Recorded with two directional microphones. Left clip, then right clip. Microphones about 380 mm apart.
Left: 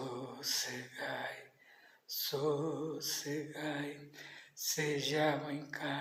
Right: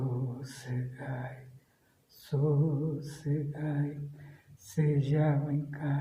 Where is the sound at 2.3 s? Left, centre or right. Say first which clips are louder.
Right 2 dB; right.